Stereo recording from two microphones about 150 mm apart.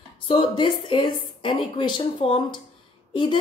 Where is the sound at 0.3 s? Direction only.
35° left (ahead or behind).